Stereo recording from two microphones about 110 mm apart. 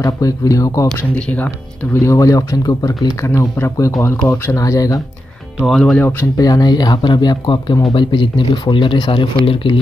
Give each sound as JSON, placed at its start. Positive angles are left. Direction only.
{"t": 0.0, "sound": "speech", "side_deg": 30}
{"t": 1.1, "sound": "speech", "side_deg": 10}
{"t": 2.0, "sound": "speech", "side_deg": 30}
{"t": 3.3, "sound": "speech", "side_deg": 20}
{"t": 5.6, "sound": "speech", "side_deg": 5}
{"t": 6.0, "sound": "speech", "side_deg": 25}
{"t": 6.4, "sound": "speech", "side_deg": 35}